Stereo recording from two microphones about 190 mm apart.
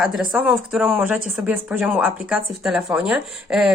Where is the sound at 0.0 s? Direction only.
Centre (ahead or behind).